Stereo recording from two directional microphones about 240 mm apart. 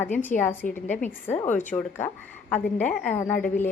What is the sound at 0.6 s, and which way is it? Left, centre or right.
Speech, left.